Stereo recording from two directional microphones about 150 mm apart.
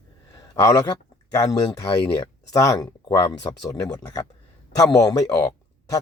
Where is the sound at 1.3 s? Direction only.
25° left (ahead or behind).